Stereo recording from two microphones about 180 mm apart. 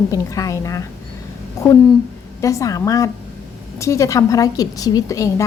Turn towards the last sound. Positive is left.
turn(degrees=15)  # may be behind; listen again after turning